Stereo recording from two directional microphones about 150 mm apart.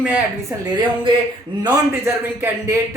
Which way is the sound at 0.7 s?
30° right (ahead or behind).